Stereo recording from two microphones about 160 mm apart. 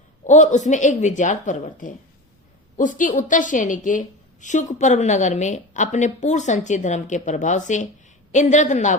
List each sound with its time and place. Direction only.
0.3 s a woman's voice: 50° left (ahead or behind)